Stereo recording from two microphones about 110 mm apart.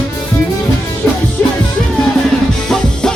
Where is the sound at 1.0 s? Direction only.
20° left (ahead or behind).